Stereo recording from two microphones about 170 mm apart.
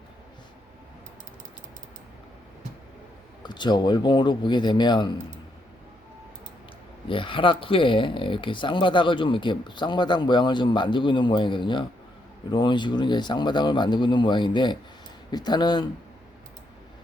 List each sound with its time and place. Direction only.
3.4 s speech: 25° left (ahead or behind)
7.1 s speech: 30° left (ahead or behind)